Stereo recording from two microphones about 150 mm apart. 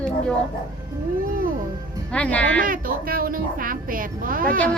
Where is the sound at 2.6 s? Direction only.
70° right (ahead or behind).